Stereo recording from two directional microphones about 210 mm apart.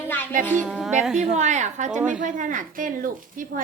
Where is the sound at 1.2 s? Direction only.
35° right (ahead or behind).